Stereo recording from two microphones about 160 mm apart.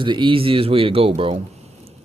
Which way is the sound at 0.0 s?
30° right (ahead or behind).